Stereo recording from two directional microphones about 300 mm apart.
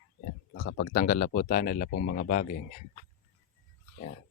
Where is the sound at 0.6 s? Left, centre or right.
Left.